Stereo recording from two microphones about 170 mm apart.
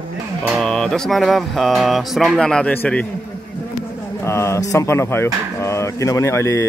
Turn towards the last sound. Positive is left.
turn(degrees=15)  # may be behind; listen again after turning